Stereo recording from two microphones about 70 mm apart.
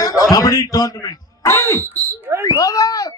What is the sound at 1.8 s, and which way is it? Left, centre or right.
Fire alarm, right.